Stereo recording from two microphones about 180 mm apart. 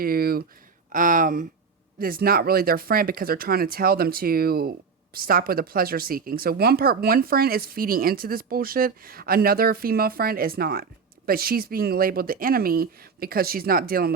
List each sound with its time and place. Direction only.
0.0 s speech: 55° right (ahead or behind)